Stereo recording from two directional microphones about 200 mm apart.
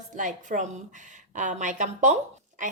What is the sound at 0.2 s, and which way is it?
A woman's voice, 40° right (ahead or behind).